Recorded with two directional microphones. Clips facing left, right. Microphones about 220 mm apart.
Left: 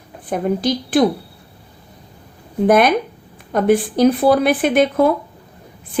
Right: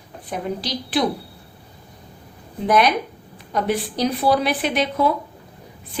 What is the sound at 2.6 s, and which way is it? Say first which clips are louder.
Speech: left 5 dB; 50° left (ahead or behind).